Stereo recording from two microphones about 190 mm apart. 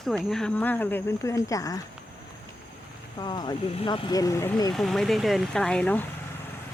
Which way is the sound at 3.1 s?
20° left (ahead or behind).